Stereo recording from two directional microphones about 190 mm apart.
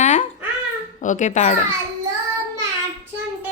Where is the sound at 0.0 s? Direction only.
40° left (ahead or behind).